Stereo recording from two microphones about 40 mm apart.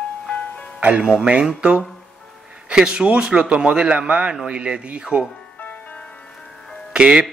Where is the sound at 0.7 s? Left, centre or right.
Right.